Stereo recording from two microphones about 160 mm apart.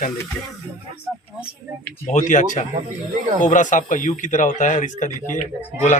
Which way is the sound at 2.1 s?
50° left (ahead or behind).